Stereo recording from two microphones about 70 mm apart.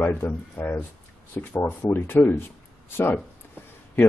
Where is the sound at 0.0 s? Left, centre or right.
Left.